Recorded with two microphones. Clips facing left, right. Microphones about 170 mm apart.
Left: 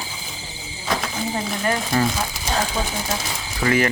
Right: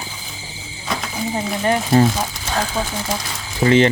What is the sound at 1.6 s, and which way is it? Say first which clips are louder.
Speech: right 7 dB; 25° right (ahead or behind).